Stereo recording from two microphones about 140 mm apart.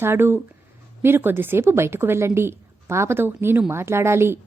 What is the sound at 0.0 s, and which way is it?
A woman's voice, 15° right (ahead or behind).